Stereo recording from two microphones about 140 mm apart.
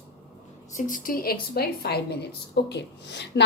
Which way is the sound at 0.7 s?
70° left (ahead or behind).